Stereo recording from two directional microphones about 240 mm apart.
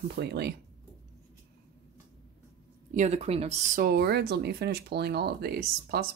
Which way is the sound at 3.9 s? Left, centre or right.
Right.